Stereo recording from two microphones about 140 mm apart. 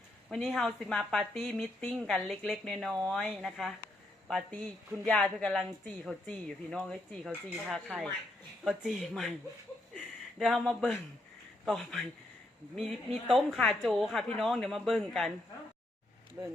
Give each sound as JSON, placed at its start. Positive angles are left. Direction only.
{"t": 0.3, "sound": "speech", "side_deg": 5}
{"t": 9.9, "sound": "a sound", "side_deg": 0}
{"t": 11.6, "sound": "speech", "side_deg": 0}
{"t": 13.2, "sound": "speech", "side_deg": 0}
{"t": 16.4, "sound": "speech", "side_deg": -15}